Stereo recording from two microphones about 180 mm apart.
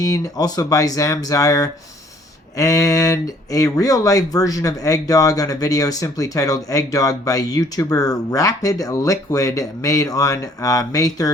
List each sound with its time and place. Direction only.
0.0 s speech: 20° left (ahead or behind)